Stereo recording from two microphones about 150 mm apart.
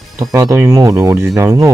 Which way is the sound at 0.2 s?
20° right (ahead or behind).